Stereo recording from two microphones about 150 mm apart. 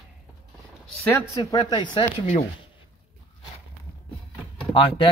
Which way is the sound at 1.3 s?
25° left (ahead or behind).